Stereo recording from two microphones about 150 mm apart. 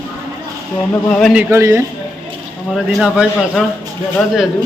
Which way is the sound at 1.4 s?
15° right (ahead or behind).